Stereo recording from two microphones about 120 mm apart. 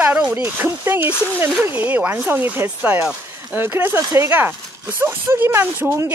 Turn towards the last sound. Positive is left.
turn(degrees=-15)  # may be behind; listen again after turning